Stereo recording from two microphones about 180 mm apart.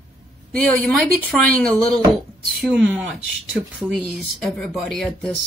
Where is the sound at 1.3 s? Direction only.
5° left (ahead or behind).